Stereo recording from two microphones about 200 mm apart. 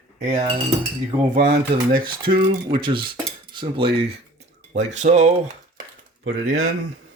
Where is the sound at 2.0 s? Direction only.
25° right (ahead or behind).